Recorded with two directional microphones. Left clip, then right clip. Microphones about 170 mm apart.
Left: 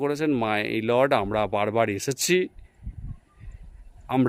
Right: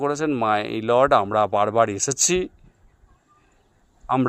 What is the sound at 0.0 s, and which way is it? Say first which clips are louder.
Speech: right 3 dB; 15° left (ahead or behind).